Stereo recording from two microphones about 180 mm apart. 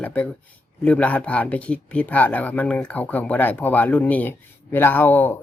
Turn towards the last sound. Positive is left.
turn(degrees=10)  # may be behind; listen again after turning